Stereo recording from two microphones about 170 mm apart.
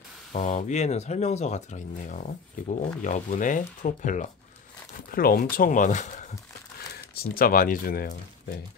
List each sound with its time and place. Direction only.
0.3 s speech: 45° left (ahead or behind)
5.1 s speech: 60° left (ahead or behind)
7.2 s speech: 60° left (ahead or behind)